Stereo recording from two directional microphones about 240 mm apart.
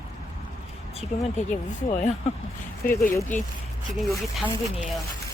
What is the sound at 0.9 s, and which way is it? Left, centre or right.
Speech, left.